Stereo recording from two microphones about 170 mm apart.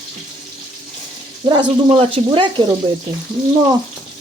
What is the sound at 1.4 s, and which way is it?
Speech, 30° right (ahead or behind).